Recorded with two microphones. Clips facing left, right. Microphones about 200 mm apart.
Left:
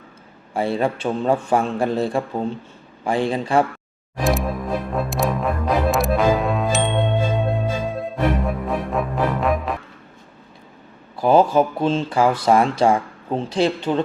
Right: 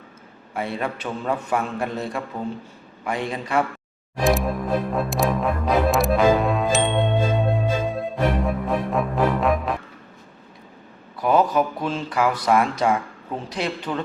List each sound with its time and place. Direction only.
0.5 s a man's voice: 30° left (ahead or behind)
4.2 s music: centre (ahead or behind)
11.2 s speech: 30° left (ahead or behind)